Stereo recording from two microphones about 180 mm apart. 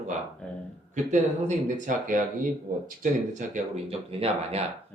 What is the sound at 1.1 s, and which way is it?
Speech, 45° right (ahead or behind).